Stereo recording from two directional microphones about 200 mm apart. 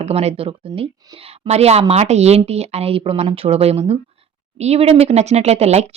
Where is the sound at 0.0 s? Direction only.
30° right (ahead or behind).